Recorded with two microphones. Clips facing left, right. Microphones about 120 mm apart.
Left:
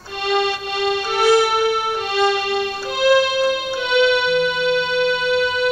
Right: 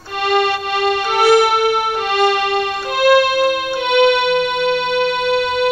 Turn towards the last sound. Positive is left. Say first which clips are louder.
# right 2 dB
turn(degrees=-60)  # may be behind; listen again after turning